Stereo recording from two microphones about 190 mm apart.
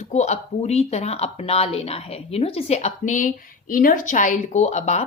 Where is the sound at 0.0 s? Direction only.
35° left (ahead or behind).